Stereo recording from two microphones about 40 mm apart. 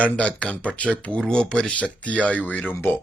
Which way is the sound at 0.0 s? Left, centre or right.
Left.